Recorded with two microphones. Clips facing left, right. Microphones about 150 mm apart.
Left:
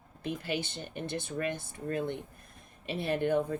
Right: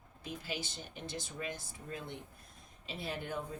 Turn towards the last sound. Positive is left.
turn(degrees=65)  # may be behind; listen again after turning